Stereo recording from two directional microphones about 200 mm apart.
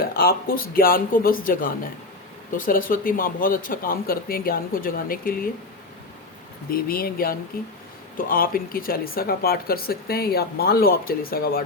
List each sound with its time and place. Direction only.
0.0 s speech: 50° left (ahead or behind)
6.7 s speech: 45° left (ahead or behind)